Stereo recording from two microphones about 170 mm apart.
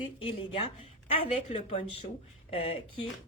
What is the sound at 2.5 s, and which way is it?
Speech, 35° left (ahead or behind).